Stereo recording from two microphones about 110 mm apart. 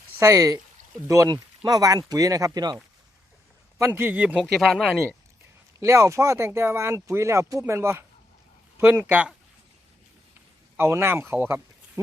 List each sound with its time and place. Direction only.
0.2 s speech: 30° right (ahead or behind)
3.8 s speech: 20° right (ahead or behind)
4.4 s speech: centre (ahead or behind)
5.8 s speech: 25° right (ahead or behind)
10.8 s speech: 20° right (ahead or behind)